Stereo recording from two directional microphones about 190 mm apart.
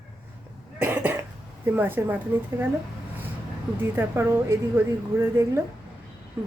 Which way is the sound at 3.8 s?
10° right (ahead or behind).